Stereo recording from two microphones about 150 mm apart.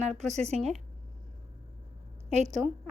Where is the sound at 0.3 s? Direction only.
45° right (ahead or behind).